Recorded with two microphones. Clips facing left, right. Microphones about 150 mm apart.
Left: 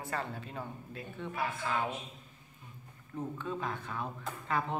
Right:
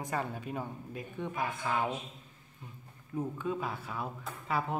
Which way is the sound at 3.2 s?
10° right (ahead or behind).